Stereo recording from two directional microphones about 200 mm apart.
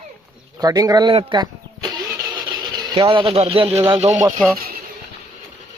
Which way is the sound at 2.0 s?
20° right (ahead or behind).